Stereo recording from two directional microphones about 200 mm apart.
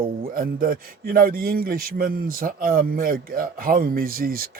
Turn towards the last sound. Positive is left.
turn(degrees=-45)  # may be behind; listen again after turning